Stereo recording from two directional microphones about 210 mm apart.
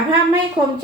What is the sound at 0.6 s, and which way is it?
Speech, 20° right (ahead or behind).